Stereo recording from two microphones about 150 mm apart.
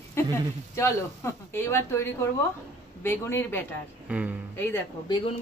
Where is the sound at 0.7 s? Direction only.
20° left (ahead or behind).